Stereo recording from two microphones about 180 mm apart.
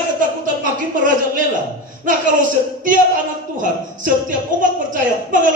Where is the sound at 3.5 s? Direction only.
45° right (ahead or behind).